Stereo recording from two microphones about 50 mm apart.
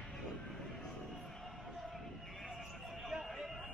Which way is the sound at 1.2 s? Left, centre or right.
Centre.